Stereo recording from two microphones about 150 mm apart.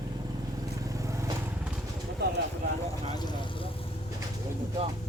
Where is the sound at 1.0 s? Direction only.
20° right (ahead or behind).